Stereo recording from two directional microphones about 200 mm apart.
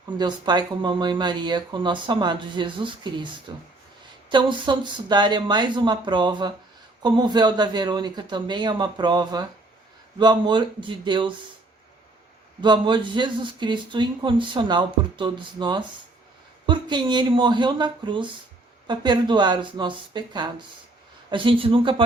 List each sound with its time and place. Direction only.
0.2 s speech: 20° right (ahead or behind)
12.6 s speech: 25° right (ahead or behind)